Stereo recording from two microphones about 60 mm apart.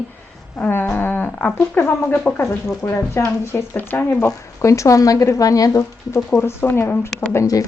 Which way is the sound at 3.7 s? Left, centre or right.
Left.